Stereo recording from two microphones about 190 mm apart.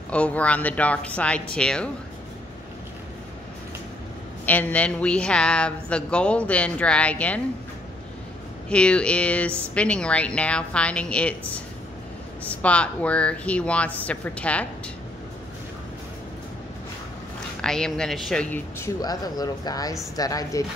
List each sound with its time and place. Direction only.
0.1 s speech: 5° left (ahead or behind)
4.5 s a woman's voice: 10° left (ahead or behind)
8.6 s a woman's voice: 5° left (ahead or behind)
17.6 s a woman's voice: 5° left (ahead or behind)
18.9 s speech: 20° left (ahead or behind)